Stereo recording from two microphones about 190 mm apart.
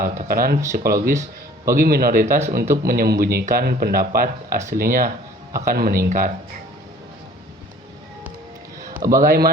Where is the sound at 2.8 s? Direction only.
55° right (ahead or behind).